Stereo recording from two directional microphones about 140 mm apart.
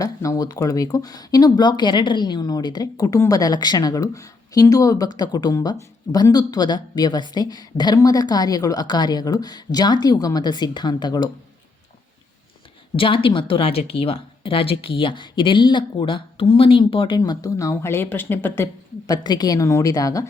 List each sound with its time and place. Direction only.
0.0 s speech: 25° left (ahead or behind)
13.0 s speech: 40° left (ahead or behind)